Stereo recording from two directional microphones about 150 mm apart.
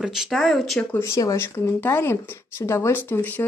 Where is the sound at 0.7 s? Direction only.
15° left (ahead or behind).